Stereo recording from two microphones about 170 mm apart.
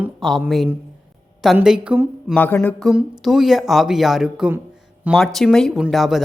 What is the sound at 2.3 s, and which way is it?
Speech, 10° left (ahead or behind).